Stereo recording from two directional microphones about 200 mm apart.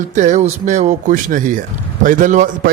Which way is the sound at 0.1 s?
35° right (ahead or behind).